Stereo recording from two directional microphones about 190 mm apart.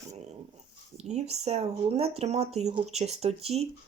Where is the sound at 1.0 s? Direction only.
35° right (ahead or behind).